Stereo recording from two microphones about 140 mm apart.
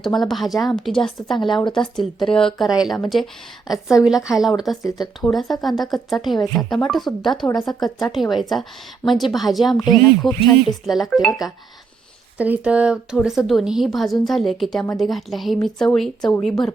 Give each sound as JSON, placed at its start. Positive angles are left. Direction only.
{"t": 0.0, "sound": "a woman's voice", "side_deg": 0}
{"t": 4.8, "sound": "speech", "side_deg": 25}
{"t": 5.2, "sound": "a woman's voice", "side_deg": 0}
{"t": 12.4, "sound": "a woman's voice", "side_deg": -10}